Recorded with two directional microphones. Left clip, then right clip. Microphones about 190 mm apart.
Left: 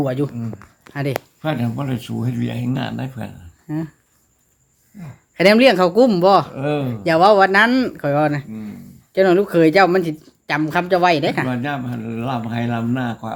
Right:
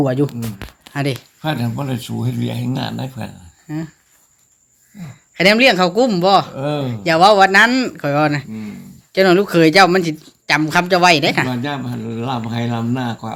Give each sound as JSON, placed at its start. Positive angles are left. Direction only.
{"t": 0.0, "sound": "speech", "side_deg": -20}
{"t": 1.4, "sound": "speech", "side_deg": 10}
{"t": 3.7, "sound": "speech", "side_deg": 25}
{"t": 5.3, "sound": "speech", "side_deg": 20}
{"t": 6.6, "sound": "speech", "side_deg": 5}
{"t": 7.0, "sound": "speech", "side_deg": 15}